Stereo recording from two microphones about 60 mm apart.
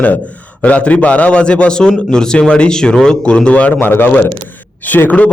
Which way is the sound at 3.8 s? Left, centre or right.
Left.